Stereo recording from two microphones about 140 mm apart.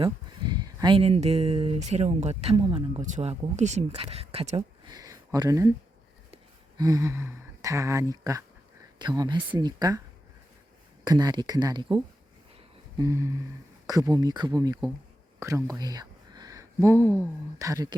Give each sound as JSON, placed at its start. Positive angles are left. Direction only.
{"t": 0.0, "sound": "a sound", "side_deg": -30}
{"t": 0.9, "sound": "speech", "side_deg": -45}
{"t": 3.0, "sound": "speech", "side_deg": -55}
{"t": 4.9, "sound": "speech", "side_deg": -25}
{"t": 6.7, "sound": "speech", "side_deg": -25}
{"t": 11.0, "sound": "speech", "side_deg": -30}
{"t": 15.4, "sound": "a sound", "side_deg": -20}
{"t": 17.6, "sound": "speech", "side_deg": -25}